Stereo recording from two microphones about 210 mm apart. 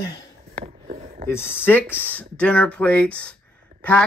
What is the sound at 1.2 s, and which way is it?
Speech, 10° left (ahead or behind).